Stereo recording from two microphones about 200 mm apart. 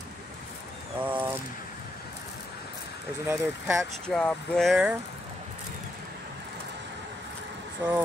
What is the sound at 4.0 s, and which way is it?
Speech, 5° left (ahead or behind).